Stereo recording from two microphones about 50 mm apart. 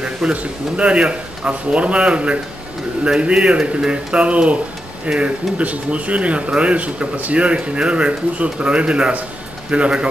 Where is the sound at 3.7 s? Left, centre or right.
Centre.